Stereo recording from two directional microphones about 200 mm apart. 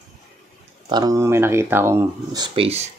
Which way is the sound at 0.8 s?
20° right (ahead or behind).